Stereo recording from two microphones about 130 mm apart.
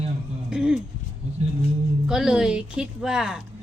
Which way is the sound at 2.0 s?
5° right (ahead or behind).